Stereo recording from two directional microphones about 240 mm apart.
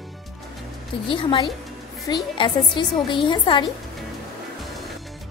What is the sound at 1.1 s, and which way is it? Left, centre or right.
A woman's voice, left.